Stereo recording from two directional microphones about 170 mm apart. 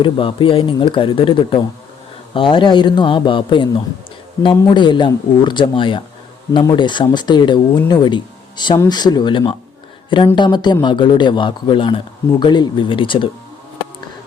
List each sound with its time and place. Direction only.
0.0 s speech: 30° left (ahead or behind)